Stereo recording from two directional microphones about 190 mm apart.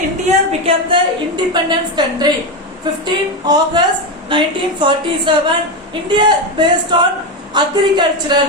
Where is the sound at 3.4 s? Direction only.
20° right (ahead or behind).